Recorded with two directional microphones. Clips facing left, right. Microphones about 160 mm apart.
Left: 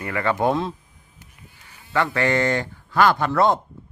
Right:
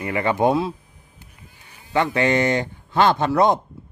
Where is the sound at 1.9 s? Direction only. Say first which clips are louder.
Right 2 dB; 20° right (ahead or behind).